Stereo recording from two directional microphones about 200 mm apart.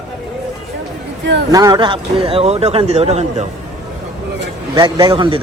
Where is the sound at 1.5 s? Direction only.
20° right (ahead or behind).